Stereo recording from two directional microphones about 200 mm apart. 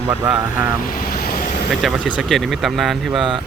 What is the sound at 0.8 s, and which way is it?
Vehicle, 45° left (ahead or behind).